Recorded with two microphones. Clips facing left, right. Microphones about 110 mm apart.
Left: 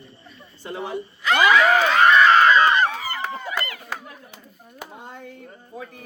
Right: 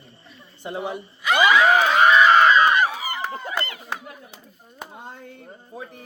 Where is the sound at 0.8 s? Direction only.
10° right (ahead or behind).